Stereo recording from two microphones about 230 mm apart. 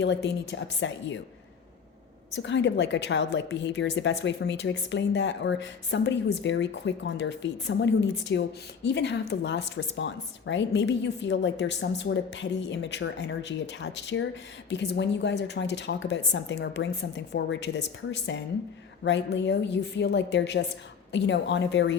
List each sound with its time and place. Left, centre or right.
0.0 s a woman's voice: left
2.3 s a woman's voice: left